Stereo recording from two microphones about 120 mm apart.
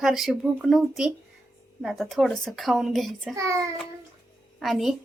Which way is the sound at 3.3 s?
25° right (ahead or behind).